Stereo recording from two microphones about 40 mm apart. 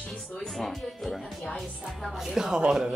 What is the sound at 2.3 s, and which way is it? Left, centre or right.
Speech, centre.